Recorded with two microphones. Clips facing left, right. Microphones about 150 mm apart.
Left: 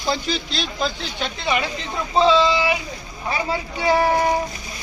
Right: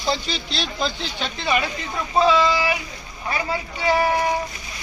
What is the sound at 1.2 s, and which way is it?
Speech, 15° left (ahead or behind).